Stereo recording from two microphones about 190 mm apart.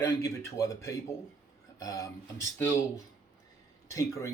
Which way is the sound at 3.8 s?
15° left (ahead or behind).